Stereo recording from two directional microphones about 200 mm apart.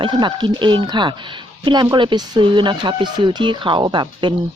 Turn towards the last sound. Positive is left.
turn(degrees=-25)  # may be behind; listen again after turning